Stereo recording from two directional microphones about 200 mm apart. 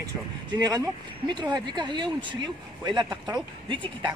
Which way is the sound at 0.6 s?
20° right (ahead or behind).